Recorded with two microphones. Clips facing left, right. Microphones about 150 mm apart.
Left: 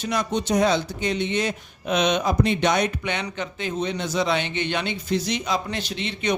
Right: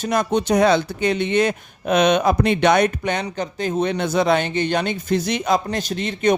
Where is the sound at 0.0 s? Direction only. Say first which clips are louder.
Right 5 dB; 50° right (ahead or behind).